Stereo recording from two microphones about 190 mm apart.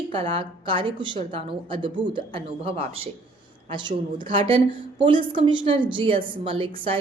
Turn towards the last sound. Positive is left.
turn(degrees=-30)  # may be behind; listen again after turning